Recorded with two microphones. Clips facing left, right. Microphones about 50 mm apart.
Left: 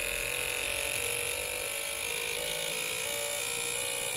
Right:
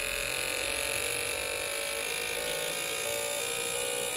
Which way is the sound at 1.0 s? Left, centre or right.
Right.